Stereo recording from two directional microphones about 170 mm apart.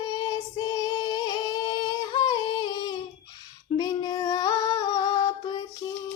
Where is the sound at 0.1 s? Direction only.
25° left (ahead or behind).